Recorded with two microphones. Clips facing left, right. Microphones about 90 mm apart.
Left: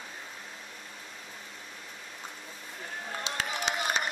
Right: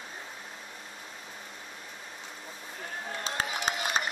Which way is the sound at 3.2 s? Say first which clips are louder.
Right 1 dB; 40° right (ahead or behind).